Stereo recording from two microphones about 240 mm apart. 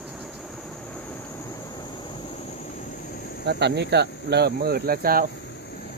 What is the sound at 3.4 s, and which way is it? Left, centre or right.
Speech, right.